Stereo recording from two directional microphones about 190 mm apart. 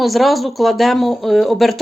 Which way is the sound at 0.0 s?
Centre (ahead or behind).